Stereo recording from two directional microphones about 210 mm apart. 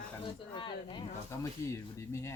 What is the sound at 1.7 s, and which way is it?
Speech, 15° left (ahead or behind).